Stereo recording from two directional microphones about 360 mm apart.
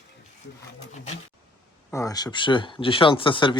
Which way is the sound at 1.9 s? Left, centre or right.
Centre.